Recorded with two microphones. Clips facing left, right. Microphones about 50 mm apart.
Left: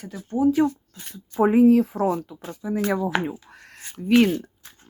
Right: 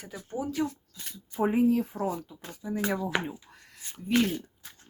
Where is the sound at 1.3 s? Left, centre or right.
Left.